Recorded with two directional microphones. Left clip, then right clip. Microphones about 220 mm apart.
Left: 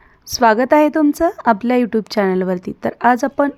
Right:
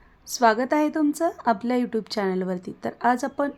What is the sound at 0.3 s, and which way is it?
A woman's voice, 20° left (ahead or behind).